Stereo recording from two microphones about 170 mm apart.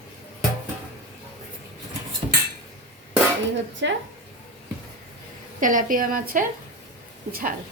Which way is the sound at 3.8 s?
90° right.